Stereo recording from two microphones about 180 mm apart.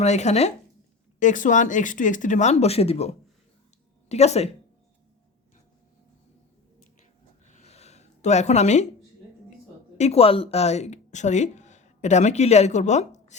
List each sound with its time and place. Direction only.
0.0 s speech: 40° left (ahead or behind)
7.4 s a sound: 40° left (ahead or behind)
10.0 s speech: 35° left (ahead or behind)